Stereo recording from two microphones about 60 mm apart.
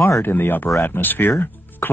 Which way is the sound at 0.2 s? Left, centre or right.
Left.